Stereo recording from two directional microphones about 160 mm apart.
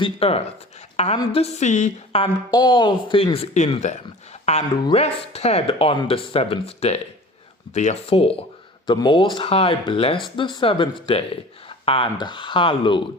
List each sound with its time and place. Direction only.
0.0 s a woman's voice: 40° left (ahead or behind)
2.2 s speech: 25° left (ahead or behind)